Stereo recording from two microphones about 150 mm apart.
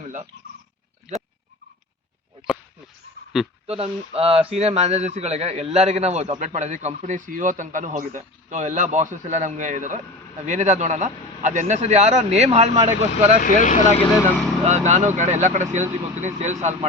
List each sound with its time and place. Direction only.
0.0 s a sound: 50° right (ahead or behind)
3.3 s speech: centre (ahead or behind)
3.7 s a man's voice: 40° right (ahead or behind)
13.6 s speech: 55° left (ahead or behind)
14.6 s a man's voice: 50° right (ahead or behind)